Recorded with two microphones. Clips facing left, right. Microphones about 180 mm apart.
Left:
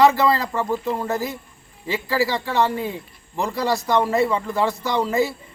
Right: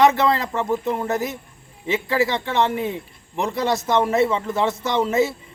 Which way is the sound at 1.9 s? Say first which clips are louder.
Right 1 dB; centre (ahead or behind).